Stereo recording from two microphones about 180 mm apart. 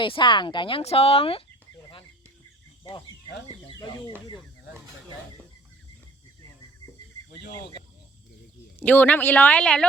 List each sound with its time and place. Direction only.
0.0 s speech: 25° left (ahead or behind)
3.8 s speech: 25° left (ahead or behind)
8.8 s speech: 10° left (ahead or behind)